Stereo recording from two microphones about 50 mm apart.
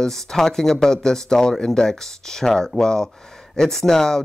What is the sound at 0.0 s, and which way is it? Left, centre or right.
Speech, centre.